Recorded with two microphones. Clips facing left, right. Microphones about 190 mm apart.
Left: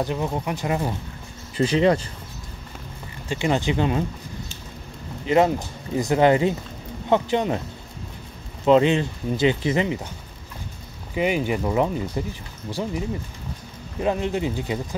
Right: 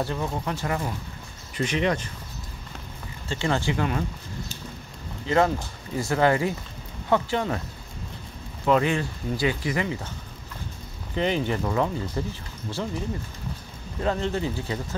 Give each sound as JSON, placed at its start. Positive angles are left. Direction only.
{"t": 0.0, "sound": "speech", "side_deg": 15}
{"t": 1.6, "sound": "speech", "side_deg": 30}
{"t": 3.3, "sound": "speech", "side_deg": 15}
{"t": 5.2, "sound": "speech", "side_deg": 20}
{"t": 8.6, "sound": "speech", "side_deg": 20}
{"t": 11.1, "sound": "speech", "side_deg": 10}
{"t": 14.0, "sound": "speech", "side_deg": 15}